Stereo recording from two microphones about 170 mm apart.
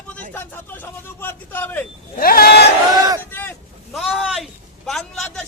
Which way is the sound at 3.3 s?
10° left (ahead or behind).